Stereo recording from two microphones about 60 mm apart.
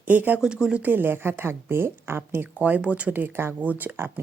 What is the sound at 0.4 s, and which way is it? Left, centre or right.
Speech, centre.